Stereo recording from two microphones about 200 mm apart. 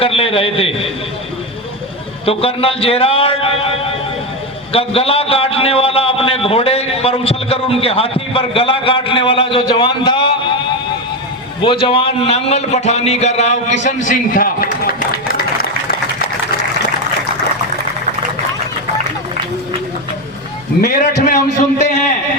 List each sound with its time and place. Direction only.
0.0 s a man's voice: 30° left (ahead or behind)
2.2 s a man's voice: 30° left (ahead or behind)
11.6 s a man's voice: 25° left (ahead or behind); by 15.4 s 45° left (ahead or behind)
20.8 s a man's voice: 40° left (ahead or behind)